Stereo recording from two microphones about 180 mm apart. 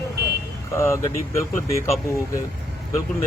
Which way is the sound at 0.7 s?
15° left (ahead or behind).